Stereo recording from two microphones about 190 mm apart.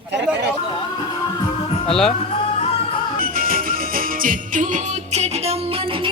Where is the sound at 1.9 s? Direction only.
Centre (ahead or behind).